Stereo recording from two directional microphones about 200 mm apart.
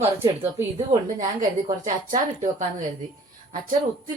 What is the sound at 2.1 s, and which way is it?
Speech, 40° right (ahead or behind).